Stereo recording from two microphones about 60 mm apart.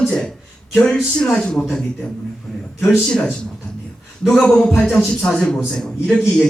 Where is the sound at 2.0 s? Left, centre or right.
Left.